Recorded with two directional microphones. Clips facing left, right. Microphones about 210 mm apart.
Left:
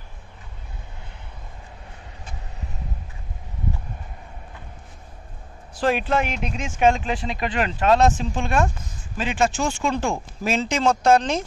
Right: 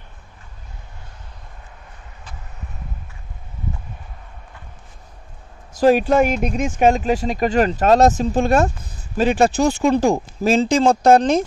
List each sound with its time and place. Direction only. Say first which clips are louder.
5.8 s speech: right 8 dB; 40° right (ahead or behind)